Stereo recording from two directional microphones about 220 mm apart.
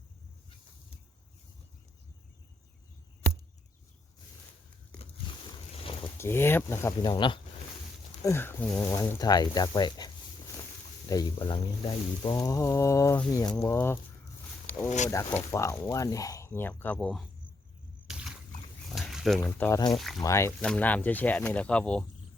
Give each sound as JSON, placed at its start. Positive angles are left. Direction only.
{"t": 5.1, "sound": "boat", "side_deg": 25}
{"t": 6.1, "sound": "speech", "side_deg": 10}
{"t": 7.1, "sound": "speech", "side_deg": 20}
{"t": 8.2, "sound": "speech", "side_deg": 10}
{"t": 11.1, "sound": "speech", "side_deg": 20}
{"t": 14.8, "sound": "speech", "side_deg": 35}
{"t": 15.1, "sound": "speech", "side_deg": 10}
{"t": 18.1, "sound": "a sound", "side_deg": -5}
{"t": 18.9, "sound": "pig", "side_deg": 0}
{"t": 19.4, "sound": "speech", "side_deg": 10}
{"t": 19.9, "sound": "speech", "side_deg": 0}
{"t": 20.2, "sound": "speech", "side_deg": 10}